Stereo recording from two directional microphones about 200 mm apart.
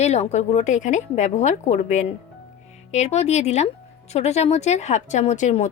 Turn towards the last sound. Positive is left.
turn(degrees=35)  # may be behind; listen again after turning